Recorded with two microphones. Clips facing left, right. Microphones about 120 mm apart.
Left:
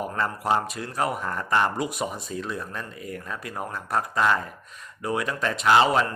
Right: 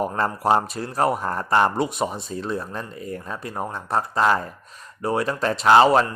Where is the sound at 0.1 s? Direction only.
35° right (ahead or behind).